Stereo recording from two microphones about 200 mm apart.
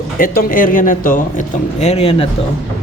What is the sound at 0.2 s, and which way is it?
Speech, 45° left (ahead or behind).